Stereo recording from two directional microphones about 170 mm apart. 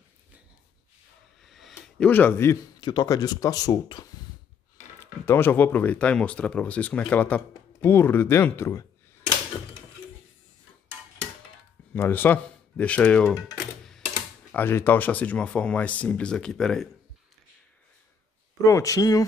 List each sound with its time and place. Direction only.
1.4 s a sound: centre (ahead or behind)
2.0 s speech: 10° left (ahead or behind)
11.9 s speech: 10° left (ahead or behind)
14.5 s speech: 10° left (ahead or behind)
18.6 s speech: 20° left (ahead or behind)